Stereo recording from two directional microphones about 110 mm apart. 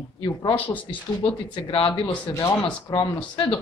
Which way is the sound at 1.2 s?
50° left (ahead or behind).